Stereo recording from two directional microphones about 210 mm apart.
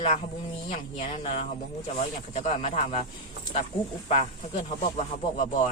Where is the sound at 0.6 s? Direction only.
30° left (ahead or behind).